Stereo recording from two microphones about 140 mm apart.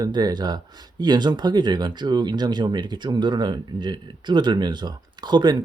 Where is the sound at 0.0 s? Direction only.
30° right (ahead or behind).